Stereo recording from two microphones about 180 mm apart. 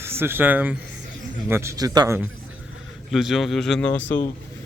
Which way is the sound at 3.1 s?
Centre (ahead or behind).